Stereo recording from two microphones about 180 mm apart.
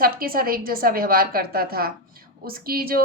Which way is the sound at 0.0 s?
55° right (ahead or behind).